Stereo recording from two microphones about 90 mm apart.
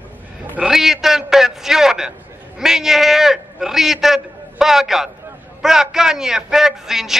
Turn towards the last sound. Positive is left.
turn(degrees=-5)  # may be behind; listen again after turning